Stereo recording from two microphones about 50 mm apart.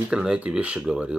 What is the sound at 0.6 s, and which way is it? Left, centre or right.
Speech, right.